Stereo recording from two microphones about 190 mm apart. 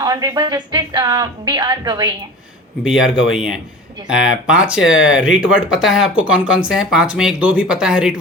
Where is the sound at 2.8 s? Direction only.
5° right (ahead or behind).